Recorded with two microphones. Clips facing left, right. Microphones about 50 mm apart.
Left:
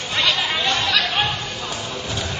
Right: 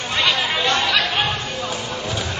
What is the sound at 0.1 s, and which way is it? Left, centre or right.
Chatter, centre.